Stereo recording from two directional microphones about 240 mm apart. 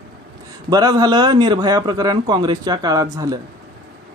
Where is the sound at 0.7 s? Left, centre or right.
Centre.